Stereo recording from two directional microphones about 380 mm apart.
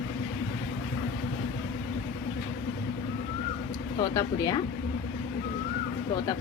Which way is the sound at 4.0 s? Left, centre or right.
Centre.